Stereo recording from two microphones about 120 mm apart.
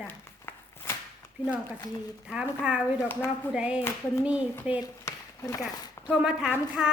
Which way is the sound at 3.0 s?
20° left (ahead or behind).